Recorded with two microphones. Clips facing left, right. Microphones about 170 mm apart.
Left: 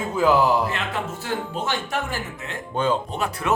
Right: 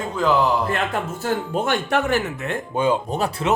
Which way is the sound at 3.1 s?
35° right (ahead or behind).